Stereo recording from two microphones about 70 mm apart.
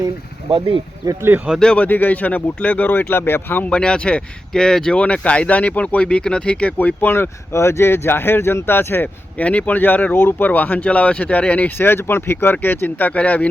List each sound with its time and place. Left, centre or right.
1.5 s speech: centre; by 3.7 s left
3.7 s speech: centre
6.7 s speech: left
9.4 s speech: centre
11.8 s speech: left